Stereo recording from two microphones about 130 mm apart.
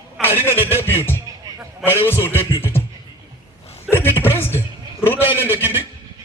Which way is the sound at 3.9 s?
15° left (ahead or behind).